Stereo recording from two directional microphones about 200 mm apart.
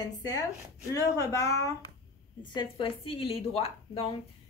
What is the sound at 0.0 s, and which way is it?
Speech, 20° left (ahead or behind).